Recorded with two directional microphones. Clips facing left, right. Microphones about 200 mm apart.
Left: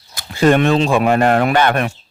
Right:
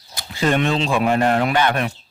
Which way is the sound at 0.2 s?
55° left (ahead or behind).